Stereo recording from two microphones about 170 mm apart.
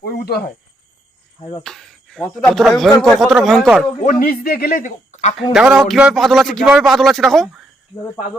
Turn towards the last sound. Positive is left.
turn(degrees=0)  # may be behind; listen again after turning